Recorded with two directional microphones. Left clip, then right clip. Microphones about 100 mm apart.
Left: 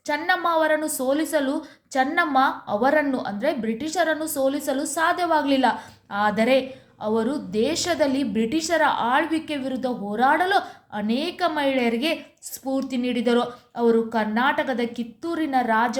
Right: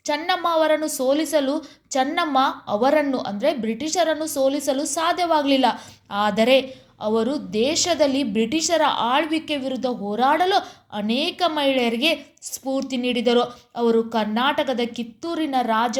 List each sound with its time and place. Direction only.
0.0 s a woman's voice: 30° right (ahead or behind)